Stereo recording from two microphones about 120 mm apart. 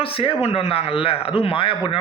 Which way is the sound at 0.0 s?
50° left (ahead or behind).